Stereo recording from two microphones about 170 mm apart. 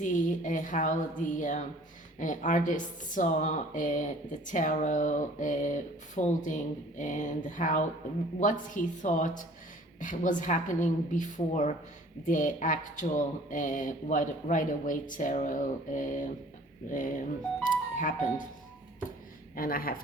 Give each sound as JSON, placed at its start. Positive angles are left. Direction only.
{"t": 0.0, "sound": "speech", "side_deg": 50}
{"t": 19.5, "sound": "speech", "side_deg": 60}